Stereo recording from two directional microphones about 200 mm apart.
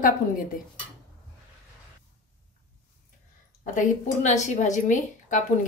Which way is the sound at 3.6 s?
40° left (ahead or behind).